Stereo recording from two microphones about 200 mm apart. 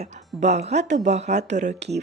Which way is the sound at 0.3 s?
35° right (ahead or behind).